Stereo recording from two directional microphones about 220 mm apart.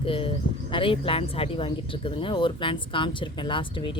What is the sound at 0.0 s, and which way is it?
Speech, 25° left (ahead or behind).